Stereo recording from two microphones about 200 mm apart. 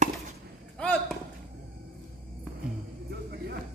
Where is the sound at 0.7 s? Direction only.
5° left (ahead or behind).